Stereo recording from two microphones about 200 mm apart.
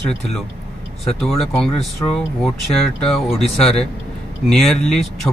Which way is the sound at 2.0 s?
20° left (ahead or behind).